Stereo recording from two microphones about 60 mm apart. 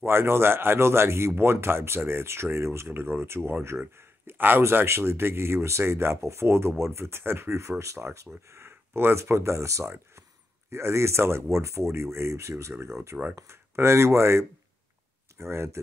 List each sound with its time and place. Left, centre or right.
0.0 s speech: right